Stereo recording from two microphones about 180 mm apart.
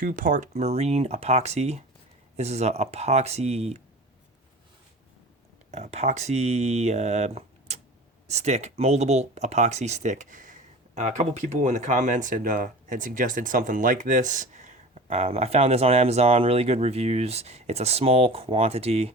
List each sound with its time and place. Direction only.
0.0 s speech: 50° right (ahead or behind)
5.7 s speech: 35° right (ahead or behind)